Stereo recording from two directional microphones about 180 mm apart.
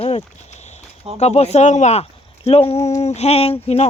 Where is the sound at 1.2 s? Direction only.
35° left (ahead or behind).